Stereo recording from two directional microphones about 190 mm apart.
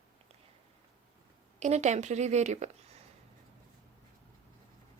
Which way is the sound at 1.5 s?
35° right (ahead or behind).